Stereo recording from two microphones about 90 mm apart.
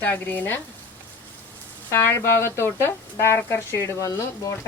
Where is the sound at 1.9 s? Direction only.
30° left (ahead or behind).